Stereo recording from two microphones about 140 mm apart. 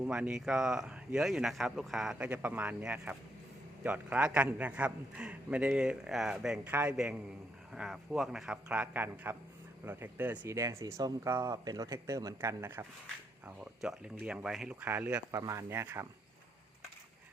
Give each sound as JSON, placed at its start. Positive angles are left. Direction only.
{"t": 0.0, "sound": "a man's voice", "side_deg": -5}
{"t": 15.3, "sound": "speech", "side_deg": -20}